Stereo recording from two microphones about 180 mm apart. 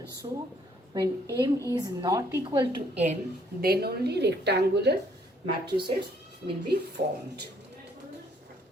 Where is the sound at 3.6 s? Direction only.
60° right (ahead or behind).